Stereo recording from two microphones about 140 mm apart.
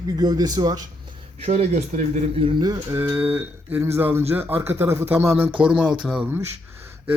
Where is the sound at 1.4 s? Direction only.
50° right (ahead or behind).